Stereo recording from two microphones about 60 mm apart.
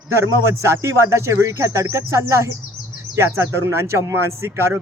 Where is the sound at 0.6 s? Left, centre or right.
Right.